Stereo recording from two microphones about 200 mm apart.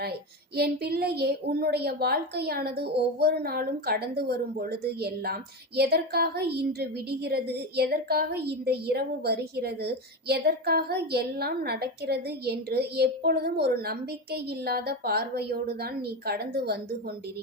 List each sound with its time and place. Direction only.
0.5 s a woman's voice: 50° right (ahead or behind)